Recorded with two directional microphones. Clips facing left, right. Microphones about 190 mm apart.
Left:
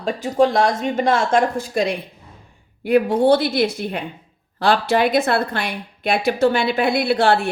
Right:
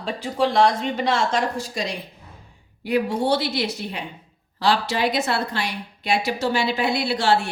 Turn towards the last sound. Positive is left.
turn(degrees=55)  # may be behind; listen again after turning